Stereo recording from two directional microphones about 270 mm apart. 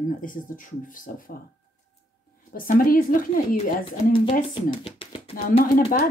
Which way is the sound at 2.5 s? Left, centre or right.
Left.